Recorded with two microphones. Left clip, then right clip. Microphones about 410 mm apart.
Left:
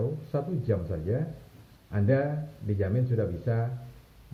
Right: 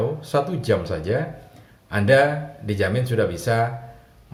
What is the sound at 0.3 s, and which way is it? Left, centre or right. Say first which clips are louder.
Speech: right 11 dB; centre.